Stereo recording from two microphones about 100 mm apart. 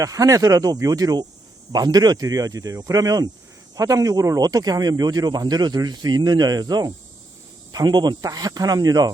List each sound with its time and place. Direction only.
0.0 s speech: 35° right (ahead or behind)